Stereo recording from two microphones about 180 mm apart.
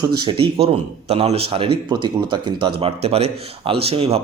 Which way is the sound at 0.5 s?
35° right (ahead or behind).